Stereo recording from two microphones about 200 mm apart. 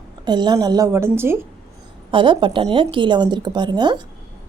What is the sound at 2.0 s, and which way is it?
A woman's voice, 25° right (ahead or behind).